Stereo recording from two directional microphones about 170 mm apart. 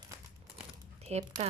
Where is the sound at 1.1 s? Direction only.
40° right (ahead or behind).